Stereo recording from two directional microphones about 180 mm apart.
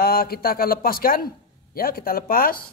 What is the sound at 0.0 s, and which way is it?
A man's voice, 55° left (ahead or behind).